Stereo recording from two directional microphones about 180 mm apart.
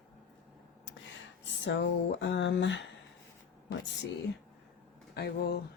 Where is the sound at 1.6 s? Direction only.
75° left (ahead or behind).